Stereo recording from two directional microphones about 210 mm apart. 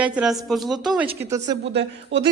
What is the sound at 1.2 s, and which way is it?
Speech, 15° right (ahead or behind).